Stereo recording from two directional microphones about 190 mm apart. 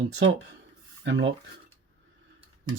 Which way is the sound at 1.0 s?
70° right (ahead or behind).